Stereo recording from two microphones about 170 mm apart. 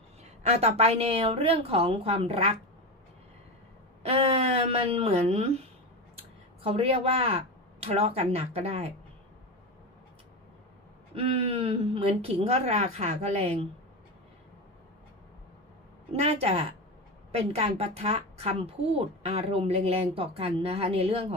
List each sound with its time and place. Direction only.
0.4 s a woman's voice: 40° right (ahead or behind)
4.0 s a woman's voice: 35° right (ahead or behind)
11.1 s a woman's voice: 35° right (ahead or behind)
16.1 s a woman's voice: 35° right (ahead or behind)